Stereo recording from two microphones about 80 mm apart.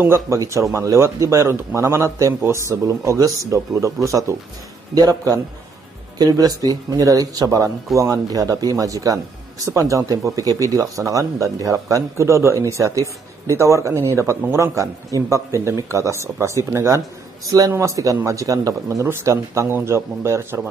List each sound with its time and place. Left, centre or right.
0.0 s speech: right